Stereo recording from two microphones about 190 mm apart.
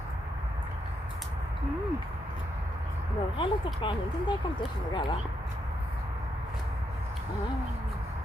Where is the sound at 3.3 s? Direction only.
25° left (ahead or behind).